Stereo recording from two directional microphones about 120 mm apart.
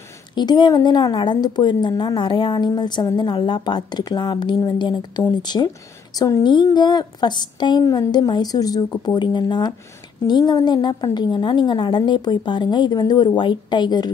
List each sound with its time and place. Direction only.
0.3 s a woman's voice: 40° left (ahead or behind)
6.4 s a woman's voice: 40° left (ahead or behind)